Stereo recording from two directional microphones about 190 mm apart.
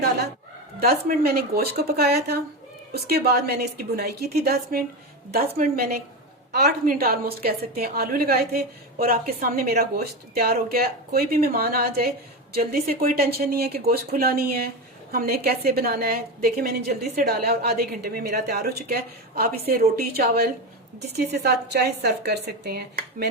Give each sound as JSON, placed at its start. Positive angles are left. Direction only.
{"t": 0.8, "sound": "a woman's voice", "side_deg": -55}